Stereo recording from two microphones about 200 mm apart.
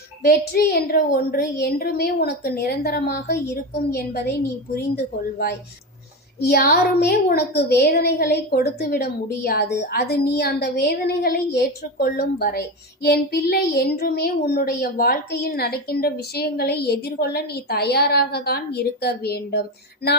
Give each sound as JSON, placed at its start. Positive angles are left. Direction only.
{"t": 0.3, "sound": "a woman's voice", "side_deg": 50}
{"t": 6.4, "sound": "a woman's voice", "side_deg": 50}